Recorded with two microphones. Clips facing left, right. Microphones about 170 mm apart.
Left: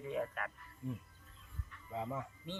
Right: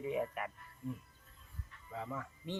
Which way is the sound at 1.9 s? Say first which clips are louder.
Left 2 dB; 20° left (ahead or behind).